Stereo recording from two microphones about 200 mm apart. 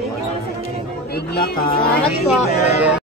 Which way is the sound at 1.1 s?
50° left (ahead or behind).